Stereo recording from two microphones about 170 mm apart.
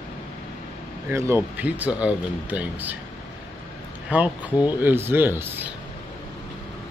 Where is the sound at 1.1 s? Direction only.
15° right (ahead or behind).